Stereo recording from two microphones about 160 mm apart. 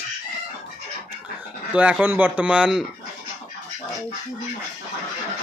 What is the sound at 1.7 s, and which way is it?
Speech, 10° right (ahead or behind).